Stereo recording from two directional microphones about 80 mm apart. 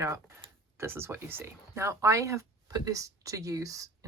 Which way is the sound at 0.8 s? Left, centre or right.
Right.